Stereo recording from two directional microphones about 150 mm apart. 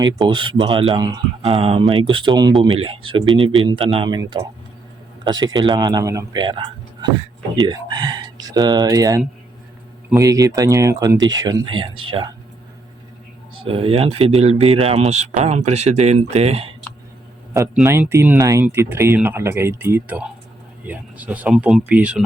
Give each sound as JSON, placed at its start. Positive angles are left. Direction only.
{"t": 0.0, "sound": "speech", "side_deg": -30}
{"t": 1.5, "sound": "speech", "side_deg": -40}
{"t": 13.6, "sound": "speech", "side_deg": -40}
{"t": 17.8, "sound": "speech", "side_deg": -15}